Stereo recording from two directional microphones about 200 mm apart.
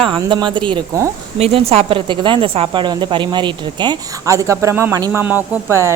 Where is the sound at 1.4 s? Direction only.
30° right (ahead or behind).